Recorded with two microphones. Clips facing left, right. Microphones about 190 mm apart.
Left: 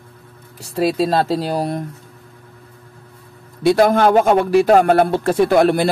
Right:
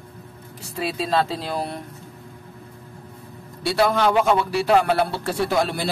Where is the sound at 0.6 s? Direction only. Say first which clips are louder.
Left 9 dB; 40° left (ahead or behind).